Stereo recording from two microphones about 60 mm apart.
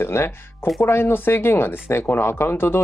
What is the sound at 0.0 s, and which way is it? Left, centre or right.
Speech, left.